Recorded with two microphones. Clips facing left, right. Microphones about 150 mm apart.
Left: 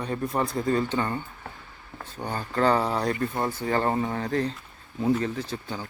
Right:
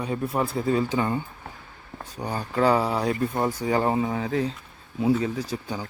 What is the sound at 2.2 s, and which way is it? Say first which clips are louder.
Speech: right 1 dB; 10° right (ahead or behind).